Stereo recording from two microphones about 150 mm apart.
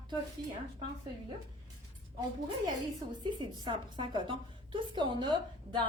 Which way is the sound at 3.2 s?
30° right (ahead or behind).